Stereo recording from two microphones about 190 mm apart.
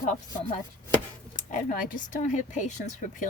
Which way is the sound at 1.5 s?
45° left (ahead or behind).